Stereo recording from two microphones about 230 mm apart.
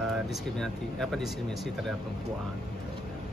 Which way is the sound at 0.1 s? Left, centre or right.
Centre.